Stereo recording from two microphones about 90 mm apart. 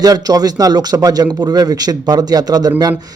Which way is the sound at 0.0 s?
45° right (ahead or behind).